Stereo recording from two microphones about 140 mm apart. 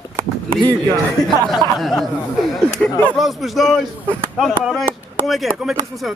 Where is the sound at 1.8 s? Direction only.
Centre (ahead or behind).